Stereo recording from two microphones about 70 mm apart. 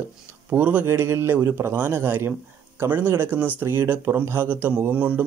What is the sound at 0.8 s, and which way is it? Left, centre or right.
Speech, right.